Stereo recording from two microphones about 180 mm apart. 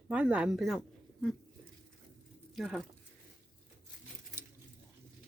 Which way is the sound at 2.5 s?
Centre (ahead or behind).